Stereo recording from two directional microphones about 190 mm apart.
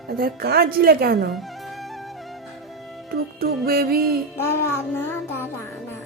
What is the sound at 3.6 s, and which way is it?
Speech, 55° right (ahead or behind).